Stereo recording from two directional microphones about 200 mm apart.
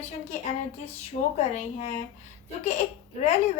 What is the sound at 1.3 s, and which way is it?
Speech, 35° left (ahead or behind).